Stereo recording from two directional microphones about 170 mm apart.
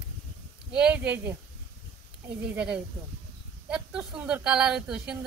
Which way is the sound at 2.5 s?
5° right (ahead or behind).